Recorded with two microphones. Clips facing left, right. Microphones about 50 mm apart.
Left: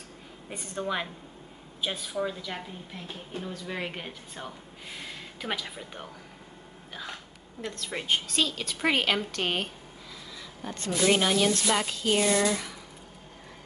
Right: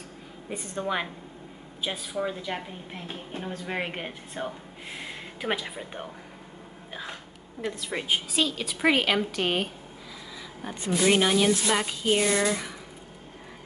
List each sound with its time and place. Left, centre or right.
0.7 s speech: centre
2.4 s a woman's voice: right
7.6 s speech: centre